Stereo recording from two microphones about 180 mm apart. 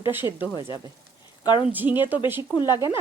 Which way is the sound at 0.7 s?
25° left (ahead or behind).